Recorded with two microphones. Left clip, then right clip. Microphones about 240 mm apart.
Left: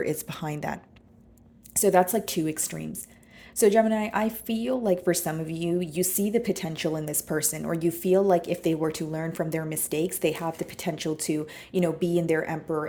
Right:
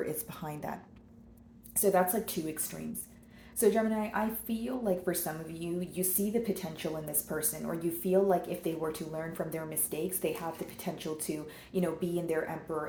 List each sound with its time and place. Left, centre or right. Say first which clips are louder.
0.0 s a woman's voice: left 7 dB; left